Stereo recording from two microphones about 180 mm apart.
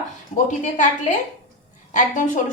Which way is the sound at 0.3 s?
40° left (ahead or behind).